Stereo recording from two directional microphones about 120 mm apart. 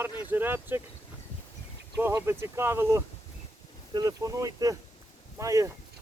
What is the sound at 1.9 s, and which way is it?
Speech, 20° right (ahead or behind).